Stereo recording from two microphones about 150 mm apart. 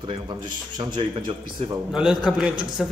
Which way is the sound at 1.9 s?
5° right (ahead or behind).